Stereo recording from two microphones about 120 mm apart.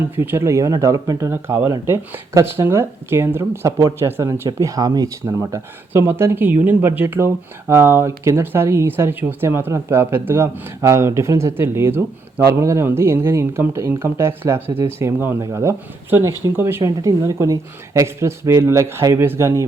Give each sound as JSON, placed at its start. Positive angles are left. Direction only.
{"t": 0.2, "sound": "speech", "side_deg": -20}